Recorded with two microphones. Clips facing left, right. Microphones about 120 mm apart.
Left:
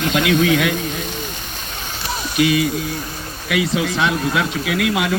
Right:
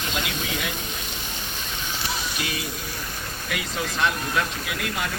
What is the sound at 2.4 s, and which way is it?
Speech, 90° left.